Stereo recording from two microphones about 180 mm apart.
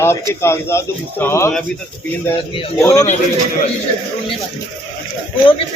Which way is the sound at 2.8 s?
15° left (ahead or behind).